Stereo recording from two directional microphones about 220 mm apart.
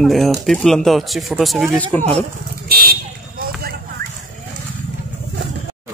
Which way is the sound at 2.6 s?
45° right (ahead or behind).